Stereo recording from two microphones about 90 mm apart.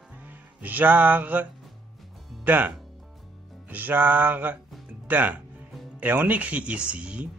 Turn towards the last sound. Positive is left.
turn(degrees=-10)  # may be behind; listen again after turning